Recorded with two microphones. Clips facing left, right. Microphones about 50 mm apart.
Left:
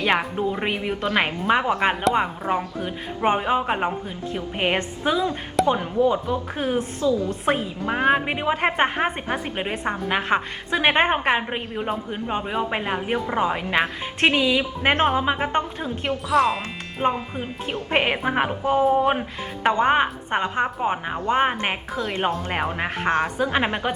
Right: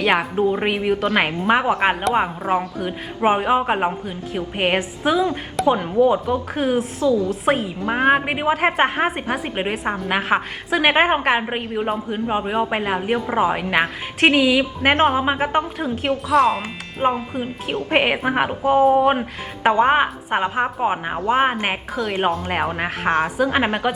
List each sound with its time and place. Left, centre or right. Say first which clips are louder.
0.2 s a woman's voice: right 5 dB; centre
5.5 s a woman's voice: right 2 dB; centre
6.3 s a woman's voice: right 4 dB; right
7.5 s speech: right 3 dB; centre
7.9 s a woman's voice: right 3 dB; centre
17.8 s a woman's voice: right 3 dB; centre